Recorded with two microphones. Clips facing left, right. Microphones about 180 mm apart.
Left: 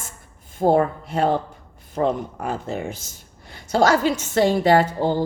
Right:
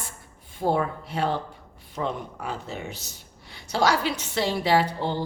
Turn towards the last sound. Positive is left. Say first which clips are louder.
# left 5 dB
turn(degrees=45)  # may be behind; listen again after turning